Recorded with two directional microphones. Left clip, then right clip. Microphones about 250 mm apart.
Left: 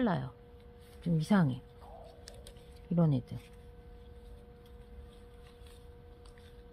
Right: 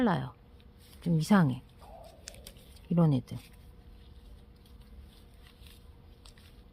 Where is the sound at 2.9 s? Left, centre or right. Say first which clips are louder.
Right 3 dB; right.